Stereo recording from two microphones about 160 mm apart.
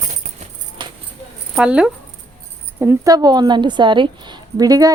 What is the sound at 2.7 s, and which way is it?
A woman's voice, 20° right (ahead or behind).